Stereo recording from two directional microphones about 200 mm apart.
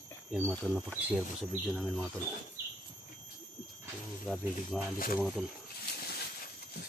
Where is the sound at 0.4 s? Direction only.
Centre (ahead or behind).